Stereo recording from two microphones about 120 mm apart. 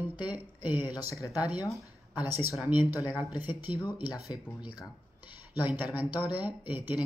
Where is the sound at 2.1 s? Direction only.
20° right (ahead or behind).